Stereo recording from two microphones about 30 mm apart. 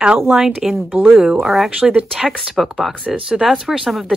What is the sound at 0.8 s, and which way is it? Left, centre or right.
Speech, right.